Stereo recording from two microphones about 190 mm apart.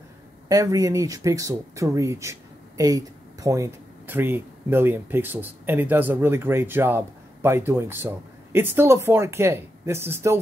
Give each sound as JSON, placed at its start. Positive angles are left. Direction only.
{"t": 0.5, "sound": "speech", "side_deg": -20}